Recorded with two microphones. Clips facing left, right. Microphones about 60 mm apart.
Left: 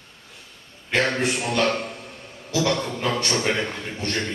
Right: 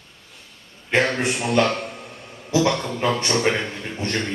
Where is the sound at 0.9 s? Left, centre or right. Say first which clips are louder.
Right 2 dB; right.